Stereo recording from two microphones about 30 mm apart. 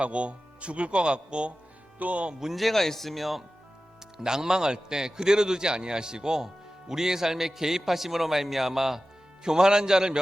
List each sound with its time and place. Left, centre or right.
0.0 s speech: right
2.0 s speech: right
2.6 s speech: centre
4.2 s a man's voice: right
9.4 s a man's voice: right